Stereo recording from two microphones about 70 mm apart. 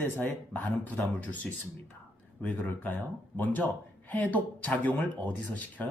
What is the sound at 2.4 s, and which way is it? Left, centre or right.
Speech, left.